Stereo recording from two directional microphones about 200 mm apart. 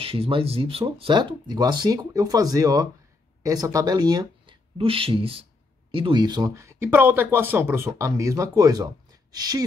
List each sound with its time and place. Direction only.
0.0 s speech: 30° right (ahead or behind)